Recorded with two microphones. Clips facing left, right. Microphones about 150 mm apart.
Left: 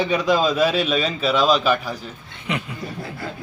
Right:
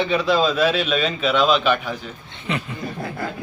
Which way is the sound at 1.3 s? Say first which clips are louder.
Even; 40° left (ahead or behind).